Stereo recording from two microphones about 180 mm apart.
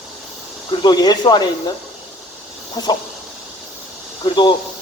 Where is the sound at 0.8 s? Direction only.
20° left (ahead or behind).